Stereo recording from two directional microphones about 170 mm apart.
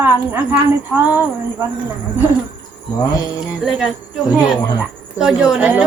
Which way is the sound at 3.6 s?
Centre (ahead or behind).